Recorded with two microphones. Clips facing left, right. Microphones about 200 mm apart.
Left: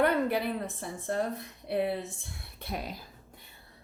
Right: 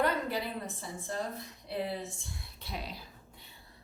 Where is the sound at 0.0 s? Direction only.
60° left (ahead or behind).